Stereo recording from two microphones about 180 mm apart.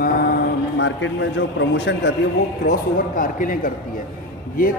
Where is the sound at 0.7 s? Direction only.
90° left.